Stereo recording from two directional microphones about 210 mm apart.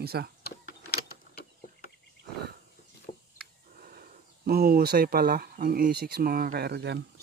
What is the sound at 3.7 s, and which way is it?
Speech, 40° right (ahead or behind).